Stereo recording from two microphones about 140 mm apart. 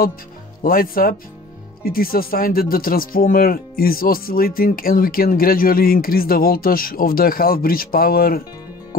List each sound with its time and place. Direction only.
0.6 s speech: 90° left